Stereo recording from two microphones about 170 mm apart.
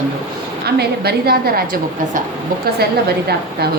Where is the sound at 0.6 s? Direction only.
70° right (ahead or behind).